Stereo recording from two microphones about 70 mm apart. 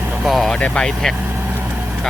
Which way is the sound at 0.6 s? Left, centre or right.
Centre.